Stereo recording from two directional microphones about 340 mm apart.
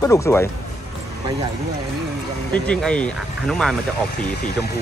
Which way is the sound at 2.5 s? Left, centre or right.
Centre.